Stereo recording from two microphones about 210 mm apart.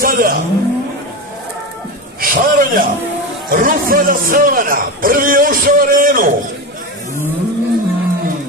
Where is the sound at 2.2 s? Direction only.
40° right (ahead or behind).